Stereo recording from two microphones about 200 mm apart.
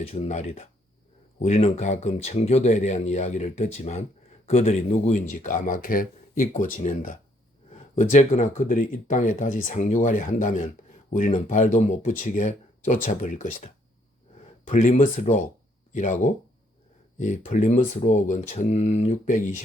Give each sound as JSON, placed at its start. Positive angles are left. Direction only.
{"t": 0.0, "sound": "speech", "side_deg": 35}
{"t": 14.7, "sound": "speech", "side_deg": 40}